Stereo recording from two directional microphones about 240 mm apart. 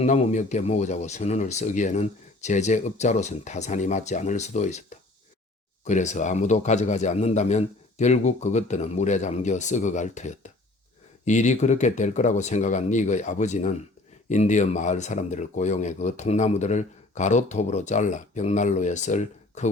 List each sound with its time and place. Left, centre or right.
0.0 s speech: left